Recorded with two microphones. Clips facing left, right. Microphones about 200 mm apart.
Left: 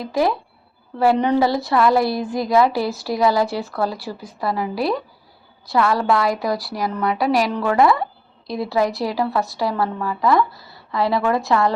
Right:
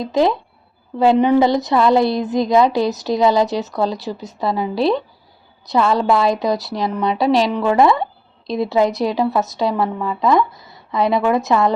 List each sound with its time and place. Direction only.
0.0 s a woman's voice: 20° right (ahead or behind)